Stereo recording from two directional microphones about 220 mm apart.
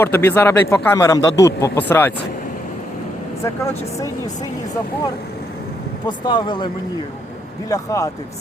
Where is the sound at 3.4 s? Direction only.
15° left (ahead or behind).